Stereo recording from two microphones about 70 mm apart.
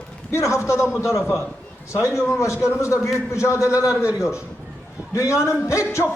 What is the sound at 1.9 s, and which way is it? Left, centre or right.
A man's voice, left.